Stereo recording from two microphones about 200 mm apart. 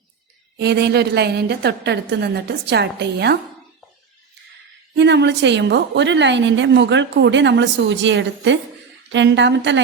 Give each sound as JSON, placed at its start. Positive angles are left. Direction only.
{"t": 0.5, "sound": "a woman's voice", "side_deg": -55}
{"t": 4.9, "sound": "a woman's voice", "side_deg": -60}